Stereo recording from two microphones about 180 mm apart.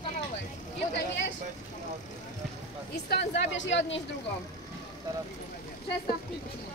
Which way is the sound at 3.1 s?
80° left.